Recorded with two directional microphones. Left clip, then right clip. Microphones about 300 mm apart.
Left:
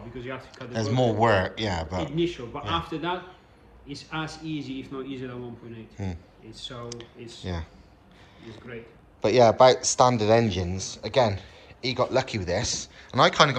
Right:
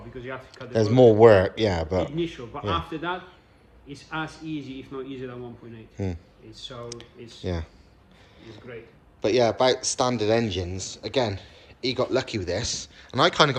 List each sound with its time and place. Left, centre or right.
0.2 s speech: centre
0.5 s speech: right
2.5 s speech: centre
5.7 s speech: right
6.8 s speech: centre
9.2 s speech: centre